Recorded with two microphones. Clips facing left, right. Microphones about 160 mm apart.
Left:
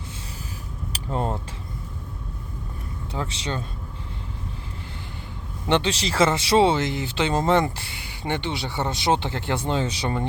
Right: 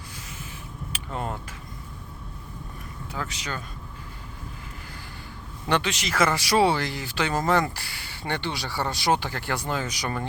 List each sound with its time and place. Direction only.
0.9 s a sound: 35° left (ahead or behind)
3.1 s speech: 30° left (ahead or behind)
5.6 s speech: 25° left (ahead or behind)